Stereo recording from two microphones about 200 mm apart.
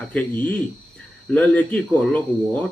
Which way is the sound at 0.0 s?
5° left (ahead or behind).